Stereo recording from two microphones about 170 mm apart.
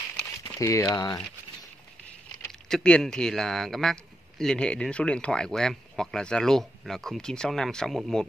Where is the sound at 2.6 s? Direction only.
5° left (ahead or behind).